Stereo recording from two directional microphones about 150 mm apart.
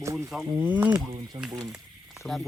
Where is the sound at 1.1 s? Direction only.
30° right (ahead or behind).